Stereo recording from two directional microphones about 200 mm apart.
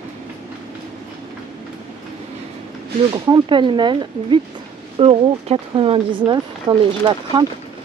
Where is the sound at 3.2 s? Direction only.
20° right (ahead or behind).